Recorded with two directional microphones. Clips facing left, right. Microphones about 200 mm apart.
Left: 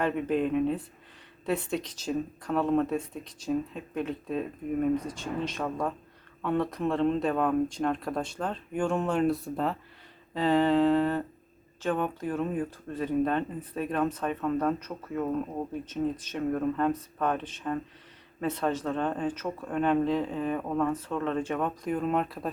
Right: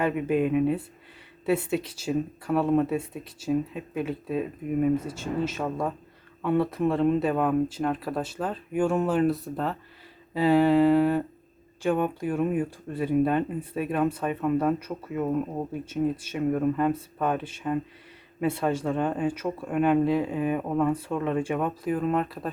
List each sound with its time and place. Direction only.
0.0 s speech: 10° right (ahead or behind)